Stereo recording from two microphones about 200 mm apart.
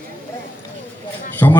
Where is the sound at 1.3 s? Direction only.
10° left (ahead or behind).